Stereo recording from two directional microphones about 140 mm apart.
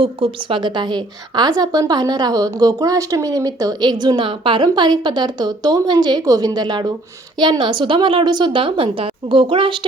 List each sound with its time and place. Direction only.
0.0 s a woman's voice: 40° right (ahead or behind)